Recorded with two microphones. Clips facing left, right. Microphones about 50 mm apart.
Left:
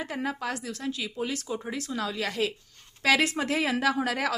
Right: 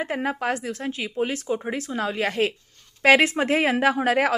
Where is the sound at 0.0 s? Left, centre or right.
Right.